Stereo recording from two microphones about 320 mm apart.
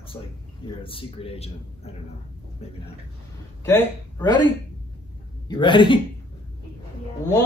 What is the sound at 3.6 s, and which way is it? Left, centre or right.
Speech, centre.